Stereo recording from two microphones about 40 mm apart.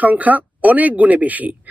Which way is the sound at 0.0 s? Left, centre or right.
Right.